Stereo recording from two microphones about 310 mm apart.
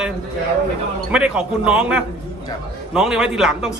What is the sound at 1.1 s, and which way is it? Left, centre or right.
A man's voice, centre.